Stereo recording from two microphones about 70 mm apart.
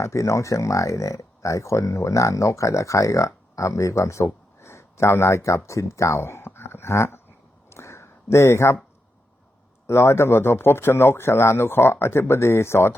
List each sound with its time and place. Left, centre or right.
0.0 s speech: left
7.7 s a sound: left
9.8 s speech: left